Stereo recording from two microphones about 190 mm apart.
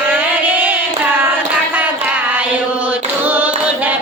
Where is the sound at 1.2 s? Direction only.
10° right (ahead or behind).